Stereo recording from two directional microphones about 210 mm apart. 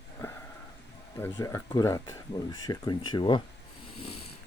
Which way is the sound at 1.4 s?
15° left (ahead or behind).